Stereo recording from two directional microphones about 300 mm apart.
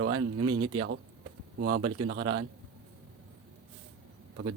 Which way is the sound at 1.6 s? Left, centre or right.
Right.